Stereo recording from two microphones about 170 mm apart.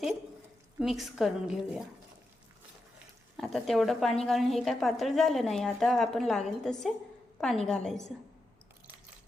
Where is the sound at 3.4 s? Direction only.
Centre (ahead or behind).